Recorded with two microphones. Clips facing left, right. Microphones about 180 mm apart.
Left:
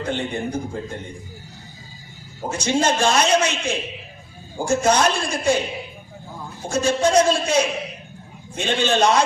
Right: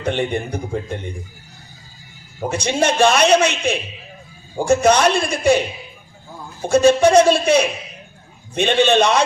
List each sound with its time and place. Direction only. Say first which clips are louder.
0.0 s a man's voice: right 4 dB; 65° right (ahead or behind)
2.5 s a man's voice: right 1 dB; 65° right (ahead or behind)
6.7 s a man's voice: right 7 dB; 65° right (ahead or behind)